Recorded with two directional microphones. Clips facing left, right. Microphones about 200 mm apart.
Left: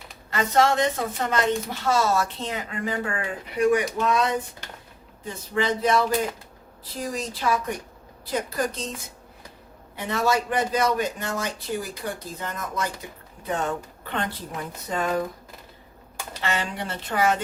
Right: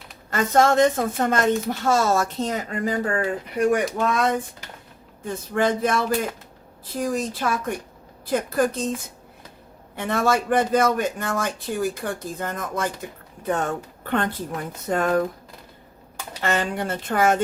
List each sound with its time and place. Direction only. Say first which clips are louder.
0.3 s a man's voice: right 3 dB; 45° right (ahead or behind)
9.9 s a man's voice: right 2 dB; 50° right (ahead or behind)
16.4 s a man's voice: right 5 dB; 50° right (ahead or behind)